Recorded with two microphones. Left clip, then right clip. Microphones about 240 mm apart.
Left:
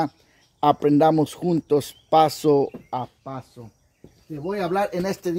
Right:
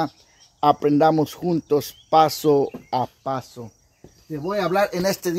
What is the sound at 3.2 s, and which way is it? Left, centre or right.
Speech, right.